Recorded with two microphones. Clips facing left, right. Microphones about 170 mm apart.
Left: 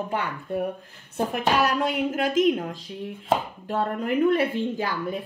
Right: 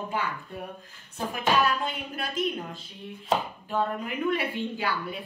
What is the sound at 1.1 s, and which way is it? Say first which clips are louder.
A woman's voice: left 3 dB; 70° left (ahead or behind).